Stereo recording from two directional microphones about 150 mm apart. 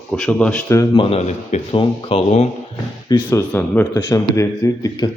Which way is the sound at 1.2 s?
50° left (ahead or behind).